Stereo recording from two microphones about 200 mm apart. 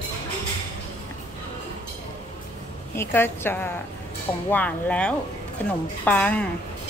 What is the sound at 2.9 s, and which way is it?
Speech, 10° left (ahead or behind).